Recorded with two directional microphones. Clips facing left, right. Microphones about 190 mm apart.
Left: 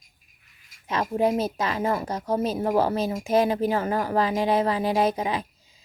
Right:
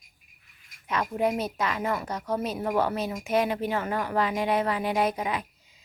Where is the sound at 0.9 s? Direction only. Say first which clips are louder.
Left 3 dB; 30° left (ahead or behind).